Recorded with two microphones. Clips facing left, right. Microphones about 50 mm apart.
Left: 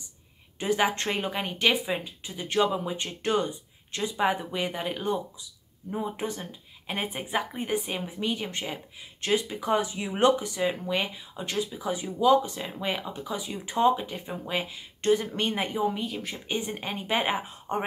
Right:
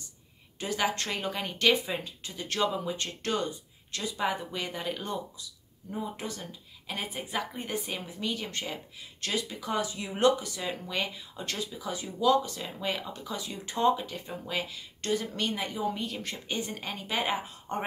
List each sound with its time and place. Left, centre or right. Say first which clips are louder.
0.6 s speech: left 4 dB; left
15.9 s speech: left 2 dB; centre
16.5 s speech: left 4 dB; left